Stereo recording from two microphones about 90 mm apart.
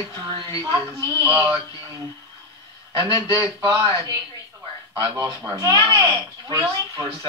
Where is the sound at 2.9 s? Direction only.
60° right (ahead or behind).